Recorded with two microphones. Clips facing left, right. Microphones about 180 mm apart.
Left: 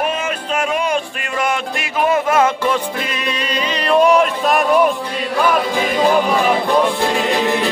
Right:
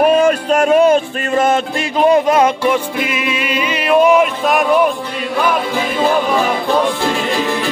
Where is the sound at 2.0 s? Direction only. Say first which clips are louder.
Right 4 dB; 20° right (ahead or behind); by 4.6 s centre (ahead or behind).